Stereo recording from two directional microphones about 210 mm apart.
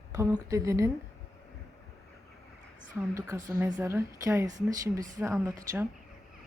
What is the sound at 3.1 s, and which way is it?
Speech, 15° right (ahead or behind).